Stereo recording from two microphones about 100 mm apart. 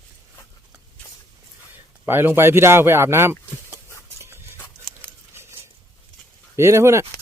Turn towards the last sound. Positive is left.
turn(degrees=-30)  # may be behind; listen again after turning